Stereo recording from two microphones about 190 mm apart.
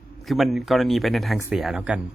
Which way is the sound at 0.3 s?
Centre (ahead or behind).